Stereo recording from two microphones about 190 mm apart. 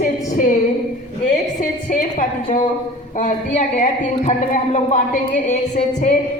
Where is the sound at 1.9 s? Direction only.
45° left (ahead or behind).